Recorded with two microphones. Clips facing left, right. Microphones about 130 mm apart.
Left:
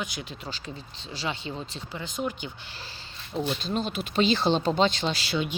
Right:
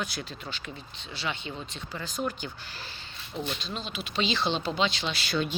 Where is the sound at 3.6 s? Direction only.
45° left (ahead or behind).